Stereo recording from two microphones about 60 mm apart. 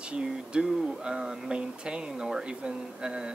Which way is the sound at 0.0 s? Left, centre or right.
Centre.